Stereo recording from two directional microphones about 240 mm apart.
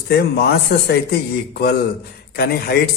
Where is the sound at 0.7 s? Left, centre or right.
Left.